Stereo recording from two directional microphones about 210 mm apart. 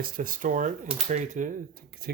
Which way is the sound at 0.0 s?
40° right (ahead or behind).